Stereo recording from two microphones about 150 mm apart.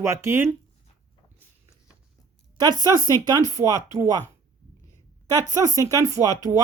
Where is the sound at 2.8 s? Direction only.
25° right (ahead or behind).